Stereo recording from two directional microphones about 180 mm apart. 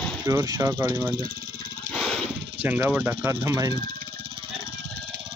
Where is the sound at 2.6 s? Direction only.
10° right (ahead or behind).